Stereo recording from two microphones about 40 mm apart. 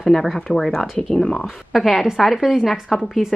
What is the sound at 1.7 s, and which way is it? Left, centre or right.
A woman's voice, centre.